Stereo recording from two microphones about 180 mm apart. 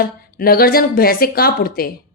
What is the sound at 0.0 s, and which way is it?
Speech, 55° left (ahead or behind).